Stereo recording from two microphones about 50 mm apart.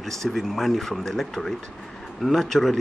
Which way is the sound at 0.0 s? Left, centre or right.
Centre.